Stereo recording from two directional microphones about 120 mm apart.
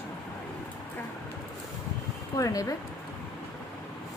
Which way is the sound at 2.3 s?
30° left (ahead or behind).